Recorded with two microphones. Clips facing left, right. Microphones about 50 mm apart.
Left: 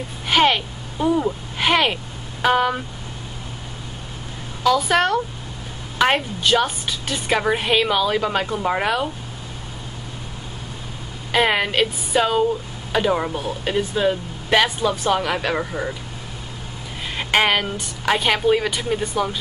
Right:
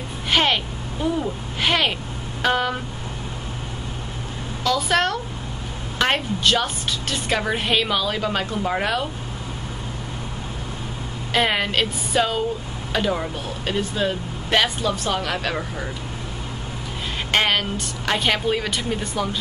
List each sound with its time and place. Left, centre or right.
0.3 s a sound: centre
1.0 s a woman's voice: centre
4.6 s a woman's voice: centre
11.3 s a woman's voice: centre
17.3 s a woman's voice: centre